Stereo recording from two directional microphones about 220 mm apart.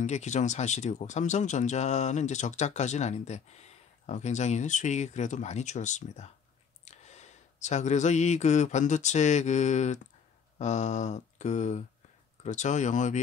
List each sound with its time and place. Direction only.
0.0 s speech: 30° left (ahead or behind)
6.8 s a sound: 30° left (ahead or behind)
7.6 s speech: 30° left (ahead or behind)